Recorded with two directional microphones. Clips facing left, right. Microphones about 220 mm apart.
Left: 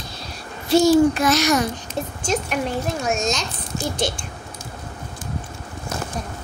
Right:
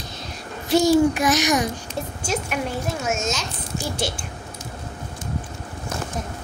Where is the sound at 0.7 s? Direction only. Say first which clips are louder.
Left 2 dB; 15° right (ahead or behind).